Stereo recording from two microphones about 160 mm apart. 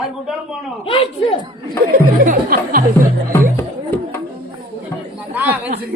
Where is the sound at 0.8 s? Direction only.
35° left (ahead or behind).